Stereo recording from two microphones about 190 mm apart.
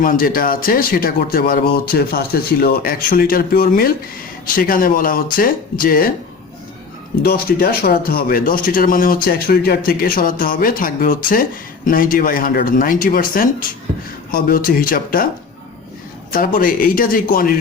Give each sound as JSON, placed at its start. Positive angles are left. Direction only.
{"t": 0.0, "sound": "speech", "side_deg": 45}
{"t": 7.2, "sound": "speech", "side_deg": 55}
{"t": 16.3, "sound": "speech", "side_deg": 50}